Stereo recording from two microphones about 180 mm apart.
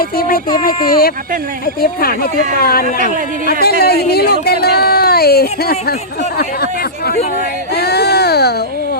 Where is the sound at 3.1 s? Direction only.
50° right (ahead or behind).